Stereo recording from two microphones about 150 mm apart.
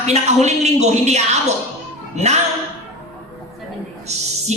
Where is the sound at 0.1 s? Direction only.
45° right (ahead or behind).